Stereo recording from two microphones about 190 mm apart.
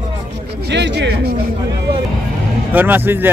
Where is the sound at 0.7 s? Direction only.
65° right (ahead or behind).